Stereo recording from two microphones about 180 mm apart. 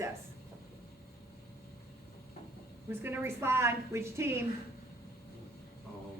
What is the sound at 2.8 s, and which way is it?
A woman's voice, 10° right (ahead or behind).